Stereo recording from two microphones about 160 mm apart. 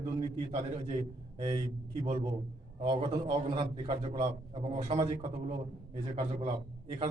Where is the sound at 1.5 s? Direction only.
35° right (ahead or behind).